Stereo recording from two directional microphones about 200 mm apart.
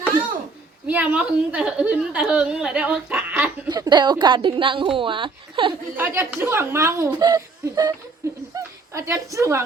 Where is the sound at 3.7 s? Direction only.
20° right (ahead or behind).